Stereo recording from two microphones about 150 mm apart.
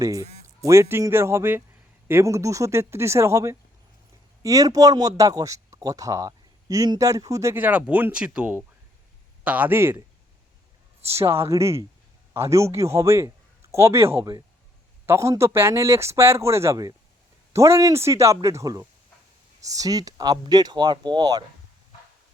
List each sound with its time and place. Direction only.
0.0 s speech: 25° right (ahead or behind)
11.0 s a man's voice: 15° right (ahead or behind)